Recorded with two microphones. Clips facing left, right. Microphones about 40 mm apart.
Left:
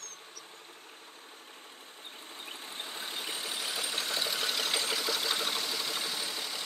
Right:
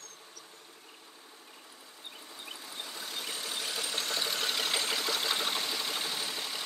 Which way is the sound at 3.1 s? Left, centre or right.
Centre.